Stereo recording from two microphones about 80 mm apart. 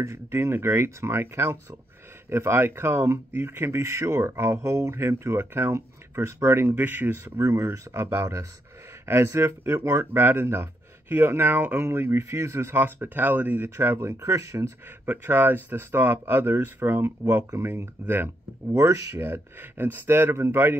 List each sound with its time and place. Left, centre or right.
0.0 s speech: right
6.8 s speech: right
7.2 s speech: right
13.7 s speech: right
15.0 s speech: right